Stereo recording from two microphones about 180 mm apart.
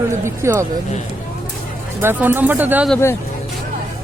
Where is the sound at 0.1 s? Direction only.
15° right (ahead or behind).